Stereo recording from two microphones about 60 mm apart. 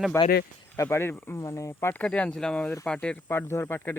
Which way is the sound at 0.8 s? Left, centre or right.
Left.